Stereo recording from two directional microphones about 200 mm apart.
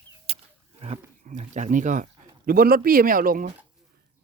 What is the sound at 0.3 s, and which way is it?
Wild animals, 30° right (ahead or behind).